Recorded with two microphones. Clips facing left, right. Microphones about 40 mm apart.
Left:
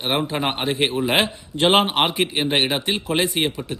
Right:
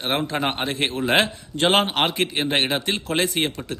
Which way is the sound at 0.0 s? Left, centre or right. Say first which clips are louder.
Left 1 dB; centre.